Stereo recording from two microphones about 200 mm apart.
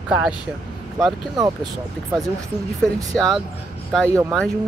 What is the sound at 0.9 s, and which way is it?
Speech, 20° right (ahead or behind).